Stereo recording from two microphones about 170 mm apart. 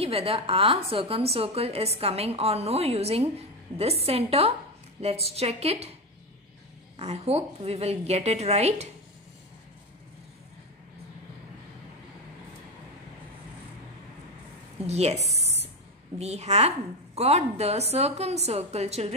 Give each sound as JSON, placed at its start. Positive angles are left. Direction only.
{"t": 0.0, "sound": "a woman's voice", "side_deg": -35}
{"t": 7.0, "sound": "a woman's voice", "side_deg": -40}
{"t": 14.9, "sound": "a woman's voice", "side_deg": -40}
{"t": 15.3, "sound": "a sound", "side_deg": -40}
{"t": 16.2, "sound": "a woman's voice", "side_deg": -40}